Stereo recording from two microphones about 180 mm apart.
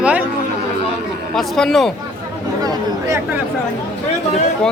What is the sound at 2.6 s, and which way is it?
Speech, 15° right (ahead or behind).